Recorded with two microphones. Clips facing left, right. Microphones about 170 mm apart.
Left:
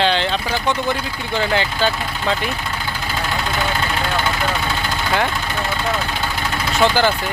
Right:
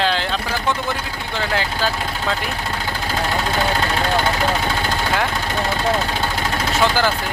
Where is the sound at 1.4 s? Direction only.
Centre (ahead or behind).